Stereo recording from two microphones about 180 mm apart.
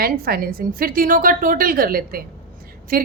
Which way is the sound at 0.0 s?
55° right (ahead or behind).